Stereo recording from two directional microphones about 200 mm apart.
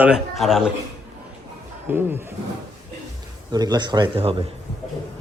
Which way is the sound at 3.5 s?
20° right (ahead or behind).